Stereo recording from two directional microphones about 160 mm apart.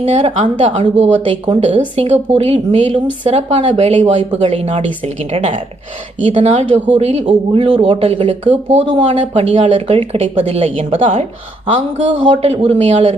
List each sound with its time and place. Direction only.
0.0 s speech: 45° right (ahead or behind)
1.5 s speech: 30° right (ahead or behind)